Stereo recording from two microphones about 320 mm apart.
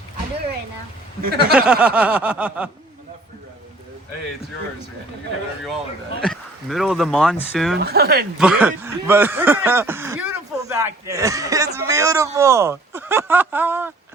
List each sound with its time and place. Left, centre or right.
1.2 s speech: right
1.5 s speech: centre
6.2 s speech: centre
7.8 s speech: right
8.4 s speech: centre